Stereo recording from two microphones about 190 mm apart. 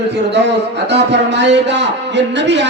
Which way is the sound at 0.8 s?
65° right (ahead or behind).